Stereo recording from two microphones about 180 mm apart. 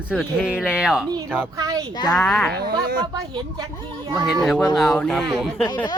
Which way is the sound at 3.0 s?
25° right (ahead or behind).